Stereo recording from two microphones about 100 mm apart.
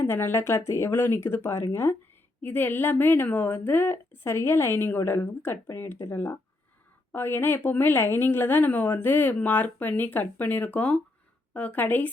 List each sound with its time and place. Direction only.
0.0 s a woman's voice: 25° left (ahead or behind)